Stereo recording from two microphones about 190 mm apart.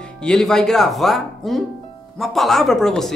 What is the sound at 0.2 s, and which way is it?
Speech, 5° left (ahead or behind).